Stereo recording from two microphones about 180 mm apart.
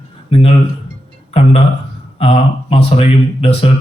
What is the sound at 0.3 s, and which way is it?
Speech, 35° left (ahead or behind).